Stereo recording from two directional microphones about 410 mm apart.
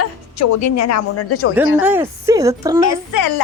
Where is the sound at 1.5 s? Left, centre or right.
Centre.